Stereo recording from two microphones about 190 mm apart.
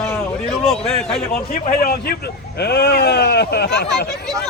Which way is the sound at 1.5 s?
50° left (ahead or behind).